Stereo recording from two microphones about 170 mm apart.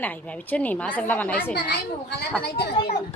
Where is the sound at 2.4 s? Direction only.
75° left (ahead or behind).